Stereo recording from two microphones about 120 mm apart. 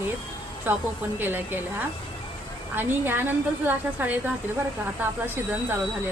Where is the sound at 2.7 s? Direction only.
15° right (ahead or behind).